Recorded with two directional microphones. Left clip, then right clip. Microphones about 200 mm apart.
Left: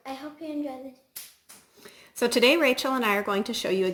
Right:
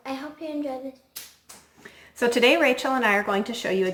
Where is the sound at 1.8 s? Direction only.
40° left (ahead or behind).